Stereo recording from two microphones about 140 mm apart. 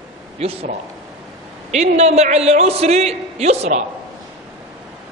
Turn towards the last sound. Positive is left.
turn(degrees=-50)  # may be behind; listen again after turning